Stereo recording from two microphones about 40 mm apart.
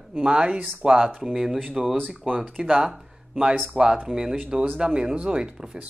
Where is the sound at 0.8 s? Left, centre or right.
Right.